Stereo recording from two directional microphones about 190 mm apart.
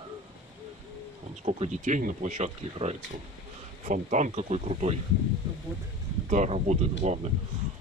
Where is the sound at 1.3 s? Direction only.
35° right (ahead or behind).